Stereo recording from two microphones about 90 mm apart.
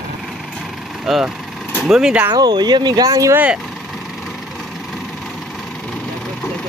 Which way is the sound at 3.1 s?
40° right (ahead or behind).